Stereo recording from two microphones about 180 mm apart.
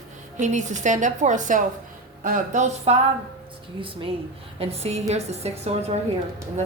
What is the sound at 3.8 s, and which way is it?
A woman's voice, 30° right (ahead or behind).